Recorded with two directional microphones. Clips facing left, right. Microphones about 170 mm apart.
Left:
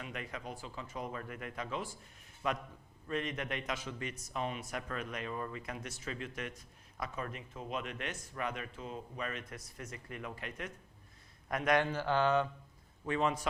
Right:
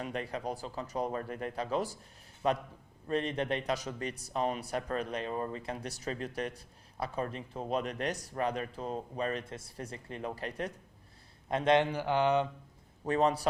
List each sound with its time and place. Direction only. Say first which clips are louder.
0.0 s a man's voice: right 7 dB; 35° right (ahead or behind); by 12.5 s 20° right (ahead or behind)
13.1 s a man's voice: right 5 dB; 40° right (ahead or behind)